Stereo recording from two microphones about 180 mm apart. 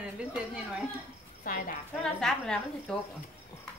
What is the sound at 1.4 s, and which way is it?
Speech, 50° left (ahead or behind).